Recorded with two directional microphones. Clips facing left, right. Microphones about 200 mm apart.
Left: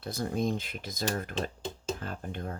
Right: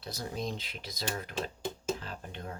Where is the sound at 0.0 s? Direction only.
50° left (ahead or behind).